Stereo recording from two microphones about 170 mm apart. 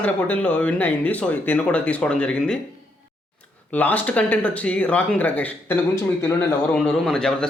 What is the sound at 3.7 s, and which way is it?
Speech, 10° left (ahead or behind).